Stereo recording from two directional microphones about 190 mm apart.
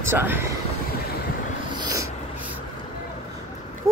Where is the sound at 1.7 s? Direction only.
20° right (ahead or behind).